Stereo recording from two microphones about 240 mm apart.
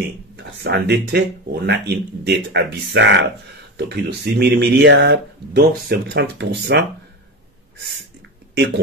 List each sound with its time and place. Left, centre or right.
0.0 s speech: right